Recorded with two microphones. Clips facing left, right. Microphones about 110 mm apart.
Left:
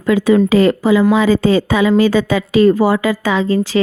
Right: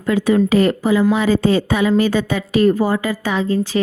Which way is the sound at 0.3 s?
90° left.